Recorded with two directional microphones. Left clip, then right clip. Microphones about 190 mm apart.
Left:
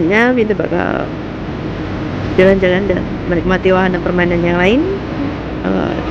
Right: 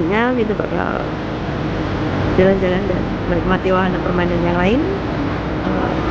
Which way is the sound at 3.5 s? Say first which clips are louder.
Left 5 dB; 15° left (ahead or behind).